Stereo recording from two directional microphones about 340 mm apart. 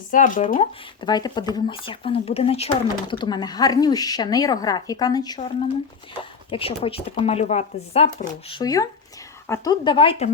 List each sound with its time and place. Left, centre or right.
0.1 s speech: left
1.0 s speech: centre
6.5 s speech: centre